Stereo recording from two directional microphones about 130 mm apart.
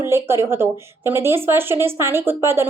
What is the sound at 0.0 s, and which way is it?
A woman's voice, 20° right (ahead or behind).